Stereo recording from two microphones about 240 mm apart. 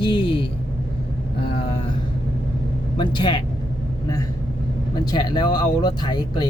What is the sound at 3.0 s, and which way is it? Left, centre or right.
Speech, centre.